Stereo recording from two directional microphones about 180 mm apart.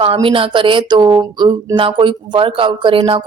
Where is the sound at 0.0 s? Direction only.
30° right (ahead or behind).